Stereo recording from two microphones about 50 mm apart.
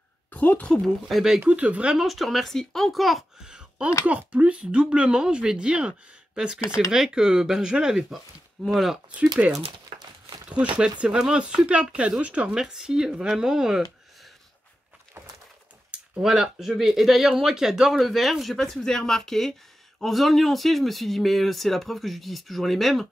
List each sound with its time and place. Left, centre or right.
0.3 s a woman's voice: left
1.0 s speech: centre
1.4 s speech: right
2.0 s speech: centre
3.3 s a sound: centre
4.0 s speech: right; by 9.0 s centre
10.5 s speech: right
12.4 s speech: centre
16.2 s speech: centre